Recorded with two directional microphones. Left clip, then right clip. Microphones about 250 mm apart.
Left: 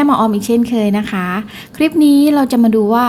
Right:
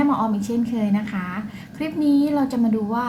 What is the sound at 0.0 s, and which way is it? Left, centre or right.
A woman's voice, left.